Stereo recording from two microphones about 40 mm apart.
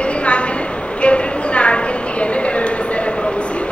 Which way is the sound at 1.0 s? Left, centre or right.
Left.